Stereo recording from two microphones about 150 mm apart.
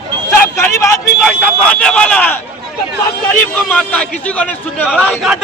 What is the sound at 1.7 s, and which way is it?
Speech, 5° left (ahead or behind).